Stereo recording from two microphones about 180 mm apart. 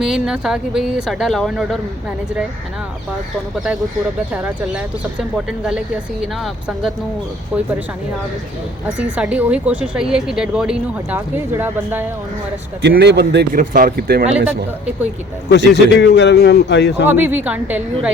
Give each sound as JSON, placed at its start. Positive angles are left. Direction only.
{"t": 0.0, "sound": "speech", "side_deg": 0}
{"t": 3.5, "sound": "a woman's voice", "side_deg": 0}
{"t": 9.0, "sound": "speech", "side_deg": -5}
{"t": 12.8, "sound": "speech", "side_deg": -70}
{"t": 15.4, "sound": "a man's voice", "side_deg": 70}
{"t": 17.1, "sound": "a woman's voice", "side_deg": -10}